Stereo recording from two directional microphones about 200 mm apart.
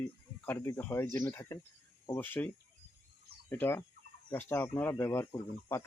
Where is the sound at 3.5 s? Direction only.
10° left (ahead or behind).